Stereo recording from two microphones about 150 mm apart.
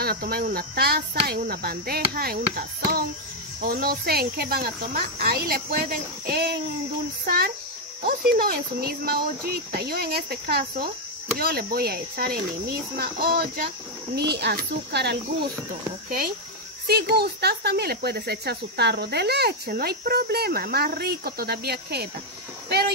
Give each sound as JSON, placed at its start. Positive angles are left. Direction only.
{"t": 0.0, "sound": "speech", "side_deg": -90}
{"t": 7.2, "sound": "a sound", "side_deg": -85}
{"t": 8.4, "sound": "speech", "side_deg": -90}
{"t": 12.9, "sound": "a sound", "side_deg": -80}
{"t": 14.1, "sound": "speech", "side_deg": -90}
{"t": 16.8, "sound": "speech", "side_deg": -90}